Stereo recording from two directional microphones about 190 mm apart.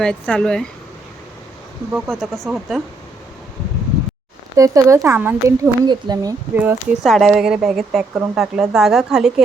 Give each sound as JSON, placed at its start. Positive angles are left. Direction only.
{"t": 0.0, "sound": "speech", "side_deg": 5}
{"t": 1.9, "sound": "speech", "side_deg": 0}
{"t": 4.5, "sound": "speech", "side_deg": -15}
{"t": 6.5, "sound": "speech", "side_deg": -10}